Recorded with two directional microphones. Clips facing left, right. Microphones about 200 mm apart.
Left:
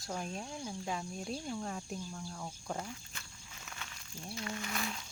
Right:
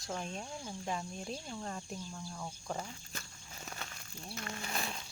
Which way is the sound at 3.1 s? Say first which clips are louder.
Right 4 dB; 40° right (ahead or behind).